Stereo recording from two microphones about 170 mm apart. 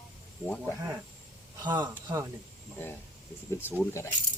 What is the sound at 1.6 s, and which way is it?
Speech, 25° right (ahead or behind).